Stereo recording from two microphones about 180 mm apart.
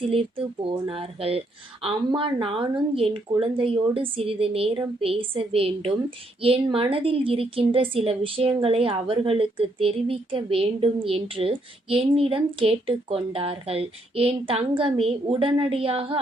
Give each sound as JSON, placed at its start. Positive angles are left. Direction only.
{"t": 0.0, "sound": "a woman's voice", "side_deg": -30}